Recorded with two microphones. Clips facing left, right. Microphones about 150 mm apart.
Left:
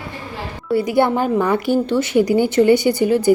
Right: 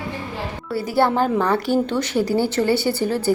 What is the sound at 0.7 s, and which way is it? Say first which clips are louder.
Speech: left 3 dB; 15° left (ahead or behind).